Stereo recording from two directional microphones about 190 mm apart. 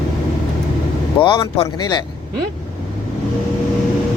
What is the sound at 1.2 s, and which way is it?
Speech, 25° left (ahead or behind).